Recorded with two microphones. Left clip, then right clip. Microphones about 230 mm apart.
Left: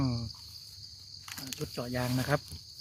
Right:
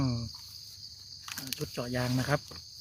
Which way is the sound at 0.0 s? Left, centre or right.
Centre.